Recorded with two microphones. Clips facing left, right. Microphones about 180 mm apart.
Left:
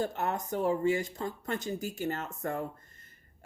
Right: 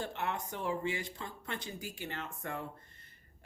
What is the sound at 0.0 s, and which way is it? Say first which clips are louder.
Speech: left 5 dB; 40° left (ahead or behind).